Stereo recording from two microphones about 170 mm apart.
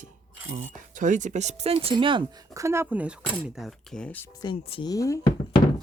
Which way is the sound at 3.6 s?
Centre (ahead or behind).